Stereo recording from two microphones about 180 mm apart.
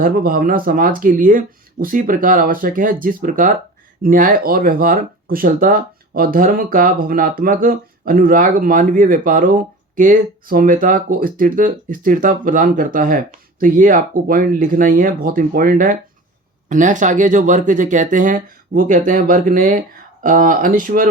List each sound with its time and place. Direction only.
0.0 s speech: 55° right (ahead or behind)